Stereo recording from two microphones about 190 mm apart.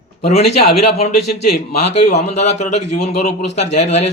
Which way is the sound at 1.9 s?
35° left (ahead or behind).